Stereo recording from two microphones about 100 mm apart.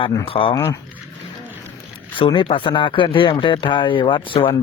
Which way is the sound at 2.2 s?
55° left (ahead or behind).